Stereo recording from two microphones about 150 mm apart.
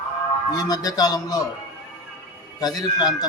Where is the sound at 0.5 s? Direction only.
25° left (ahead or behind).